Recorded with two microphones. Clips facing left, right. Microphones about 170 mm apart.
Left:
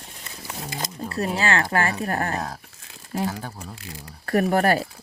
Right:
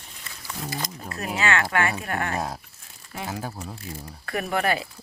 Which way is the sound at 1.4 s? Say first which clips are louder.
Right 1 dB; 35° left (ahead or behind).